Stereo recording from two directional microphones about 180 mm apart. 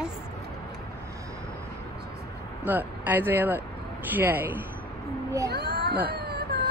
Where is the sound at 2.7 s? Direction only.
10° right (ahead or behind).